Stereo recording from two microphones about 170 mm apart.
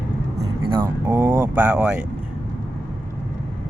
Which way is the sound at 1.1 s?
15° right (ahead or behind).